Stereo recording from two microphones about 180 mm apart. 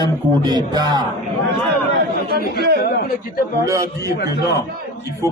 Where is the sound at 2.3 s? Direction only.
65° right (ahead or behind).